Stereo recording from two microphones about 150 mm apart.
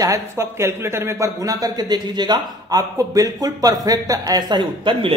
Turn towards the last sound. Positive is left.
turn(degrees=-35)  # may be behind; listen again after turning